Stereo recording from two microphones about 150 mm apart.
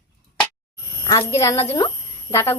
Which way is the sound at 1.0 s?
20° left (ahead or behind).